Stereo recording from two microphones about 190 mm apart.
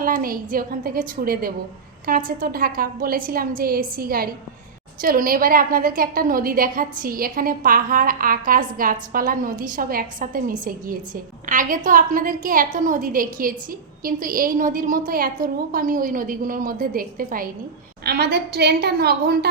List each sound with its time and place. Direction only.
0.0 s a woman's voice: 45° right (ahead or behind)